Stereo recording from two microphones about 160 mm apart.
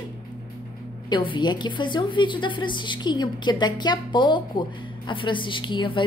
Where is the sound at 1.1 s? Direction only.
30° left (ahead or behind).